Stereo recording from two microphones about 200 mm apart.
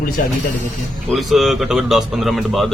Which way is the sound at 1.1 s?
Centre (ahead or behind).